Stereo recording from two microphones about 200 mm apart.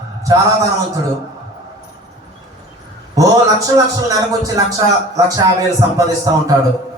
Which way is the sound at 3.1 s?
15° right (ahead or behind).